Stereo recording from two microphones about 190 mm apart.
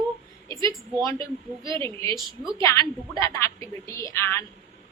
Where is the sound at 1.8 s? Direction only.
15° left (ahead or behind).